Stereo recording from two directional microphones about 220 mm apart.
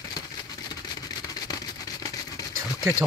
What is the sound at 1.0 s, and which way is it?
Vehicle, 15° left (ahead or behind).